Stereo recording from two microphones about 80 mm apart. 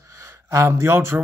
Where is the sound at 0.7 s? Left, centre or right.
Right.